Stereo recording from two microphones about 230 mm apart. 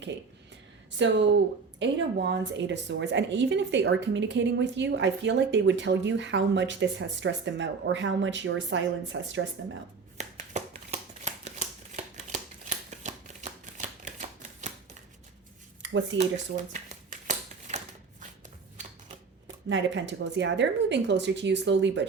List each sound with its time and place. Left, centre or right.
0.9 s a woman's voice: right
10.2 s shuffling cards: right
15.8 s a sound: right
16.7 s shuffling cards: right
19.6 s a woman's voice: right